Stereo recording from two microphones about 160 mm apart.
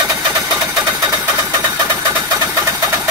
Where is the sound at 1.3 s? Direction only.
15° right (ahead or behind).